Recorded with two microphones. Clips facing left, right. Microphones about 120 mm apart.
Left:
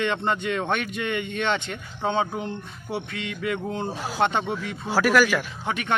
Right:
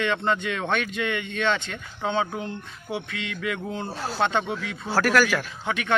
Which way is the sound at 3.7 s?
15° left (ahead or behind).